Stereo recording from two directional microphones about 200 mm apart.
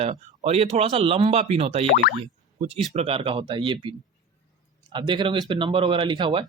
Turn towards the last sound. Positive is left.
turn(degrees=-25)  # may be behind; listen again after turning